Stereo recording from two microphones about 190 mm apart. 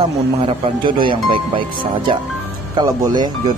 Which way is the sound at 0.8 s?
25° right (ahead or behind).